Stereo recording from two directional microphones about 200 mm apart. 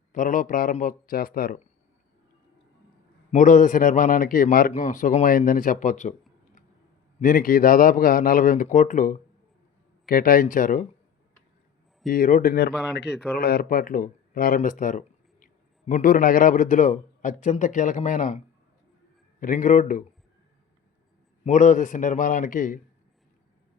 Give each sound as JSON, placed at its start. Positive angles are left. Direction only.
{"t": 0.1, "sound": "a man's voice", "side_deg": 40}
{"t": 3.3, "sound": "a man's voice", "side_deg": 40}
{"t": 7.2, "sound": "a man's voice", "side_deg": 40}
{"t": 12.0, "sound": "a man's voice", "side_deg": 45}
{"t": 21.4, "sound": "a man's voice", "side_deg": 35}